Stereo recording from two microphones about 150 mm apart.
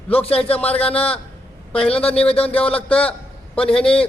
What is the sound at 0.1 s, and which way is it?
Speech, 40° left (ahead or behind).